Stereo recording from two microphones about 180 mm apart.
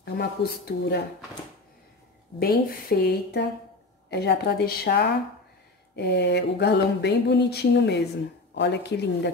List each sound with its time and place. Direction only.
0.0 s speech: 65° left (ahead or behind)
2.3 s speech: 55° left (ahead or behind)
5.9 s mantra: 70° left (ahead or behind)